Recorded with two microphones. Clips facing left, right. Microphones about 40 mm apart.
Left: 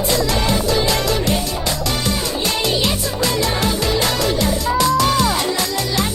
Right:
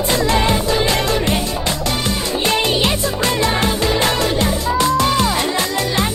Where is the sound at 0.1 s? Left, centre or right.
Right.